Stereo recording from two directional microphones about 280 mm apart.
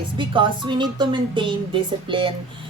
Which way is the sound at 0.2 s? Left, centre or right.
Centre.